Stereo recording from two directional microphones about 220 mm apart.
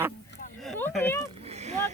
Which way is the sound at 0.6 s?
5° left (ahead or behind).